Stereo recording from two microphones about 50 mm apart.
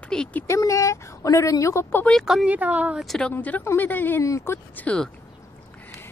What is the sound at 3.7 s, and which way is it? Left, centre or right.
Speech, left.